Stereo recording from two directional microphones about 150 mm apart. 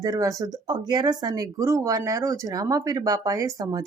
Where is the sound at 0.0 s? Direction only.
20° right (ahead or behind).